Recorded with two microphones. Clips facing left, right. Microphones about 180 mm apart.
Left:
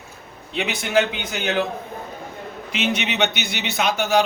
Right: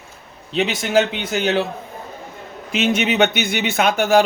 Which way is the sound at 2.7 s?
45° right (ahead or behind).